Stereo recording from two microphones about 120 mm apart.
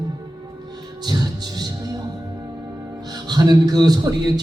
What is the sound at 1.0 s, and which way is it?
Speech, 35° right (ahead or behind).